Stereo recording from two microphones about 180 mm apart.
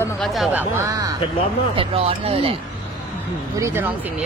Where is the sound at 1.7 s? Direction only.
30° right (ahead or behind).